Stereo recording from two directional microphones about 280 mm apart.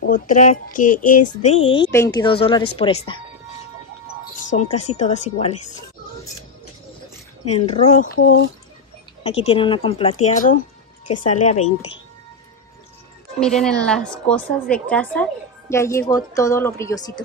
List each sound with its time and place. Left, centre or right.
0.0 s speech: left
4.5 s speech: left
8.0 s speech: left
9.2 s speech: left
13.4 s a woman's voice: centre